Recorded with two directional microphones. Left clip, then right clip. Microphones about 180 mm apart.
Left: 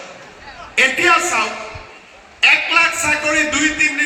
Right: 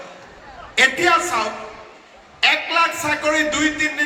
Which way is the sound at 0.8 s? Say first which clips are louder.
Left 2 dB; 30° right (ahead or behind).